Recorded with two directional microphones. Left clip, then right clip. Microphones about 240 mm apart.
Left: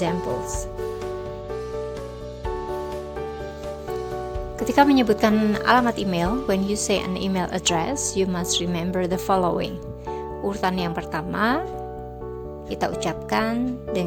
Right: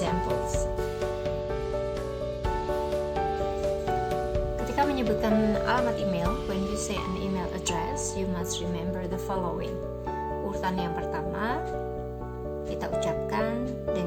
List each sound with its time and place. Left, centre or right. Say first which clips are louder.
4.7 s speech: left 10 dB; left
12.8 s speech: left 4 dB; left